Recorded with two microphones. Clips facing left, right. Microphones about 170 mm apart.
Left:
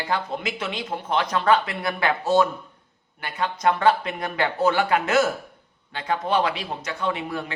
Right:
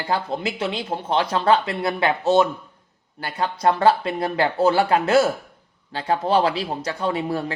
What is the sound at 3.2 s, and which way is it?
Speech, 35° right (ahead or behind).